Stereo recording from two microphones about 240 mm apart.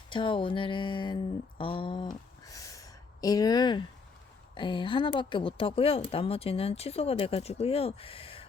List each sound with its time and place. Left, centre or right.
0.1 s speech: left
2.5 s a sound: centre
4.5 s speech: centre